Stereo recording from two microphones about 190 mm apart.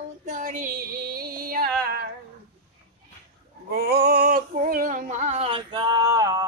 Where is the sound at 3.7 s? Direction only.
55° right (ahead or behind).